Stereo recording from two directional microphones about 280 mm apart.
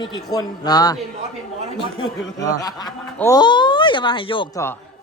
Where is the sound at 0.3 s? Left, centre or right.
Centre.